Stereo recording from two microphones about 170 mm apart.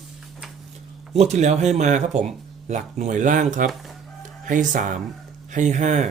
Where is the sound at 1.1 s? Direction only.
40° right (ahead or behind).